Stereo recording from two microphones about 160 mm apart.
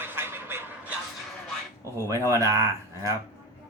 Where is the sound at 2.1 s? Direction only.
20° right (ahead or behind).